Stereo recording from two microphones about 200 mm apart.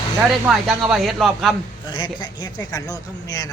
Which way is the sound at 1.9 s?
25° left (ahead or behind).